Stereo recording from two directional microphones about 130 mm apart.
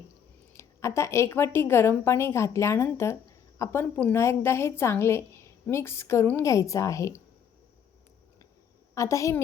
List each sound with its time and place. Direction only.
0.5 s a woman's voice: 20° left (ahead or behind)
9.0 s a woman's voice: 25° left (ahead or behind)